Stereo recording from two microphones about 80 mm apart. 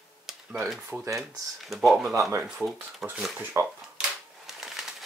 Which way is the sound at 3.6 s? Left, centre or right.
Right.